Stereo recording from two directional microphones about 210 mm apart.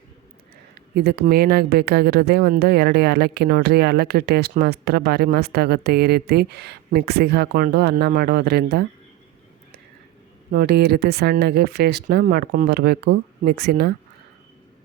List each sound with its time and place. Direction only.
0.9 s speech: 50° right (ahead or behind)
10.5 s speech: 50° right (ahead or behind)